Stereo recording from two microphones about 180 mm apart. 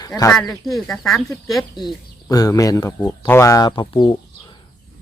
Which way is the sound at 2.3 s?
20° left (ahead or behind).